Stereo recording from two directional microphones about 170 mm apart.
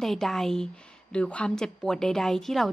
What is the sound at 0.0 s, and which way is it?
A woman's voice, centre (ahead or behind).